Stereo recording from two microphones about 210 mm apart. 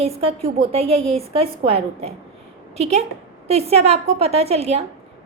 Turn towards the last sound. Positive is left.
turn(degrees=-30)  # may be behind; listen again after turning